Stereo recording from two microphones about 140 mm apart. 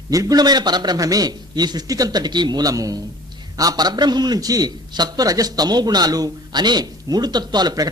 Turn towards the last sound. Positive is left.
turn(degrees=-30)  # may be behind; listen again after turning